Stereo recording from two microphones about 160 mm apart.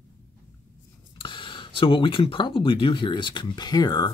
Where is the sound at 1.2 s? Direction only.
30° left (ahead or behind).